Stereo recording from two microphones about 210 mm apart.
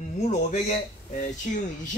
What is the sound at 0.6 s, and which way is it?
Speech, 35° left (ahead or behind).